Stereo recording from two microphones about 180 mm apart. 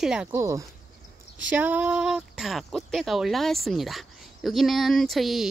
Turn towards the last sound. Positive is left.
turn(degrees=0)  # may be behind; listen again after turning